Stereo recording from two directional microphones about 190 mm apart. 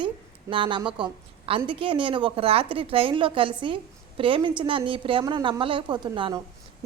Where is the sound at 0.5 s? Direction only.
25° right (ahead or behind).